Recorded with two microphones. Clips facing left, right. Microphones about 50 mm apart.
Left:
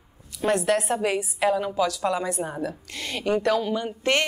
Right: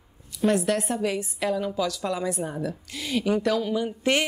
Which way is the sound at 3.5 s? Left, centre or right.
Centre.